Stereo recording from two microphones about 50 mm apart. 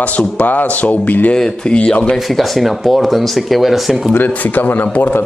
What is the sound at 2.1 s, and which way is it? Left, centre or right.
Speech, centre.